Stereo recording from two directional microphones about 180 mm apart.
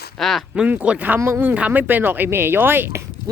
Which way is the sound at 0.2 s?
Centre (ahead or behind).